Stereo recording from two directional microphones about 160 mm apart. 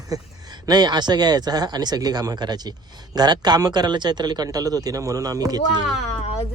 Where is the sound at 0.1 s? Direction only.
25° right (ahead or behind).